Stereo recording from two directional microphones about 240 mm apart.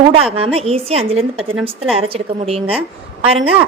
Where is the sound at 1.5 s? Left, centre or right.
Centre.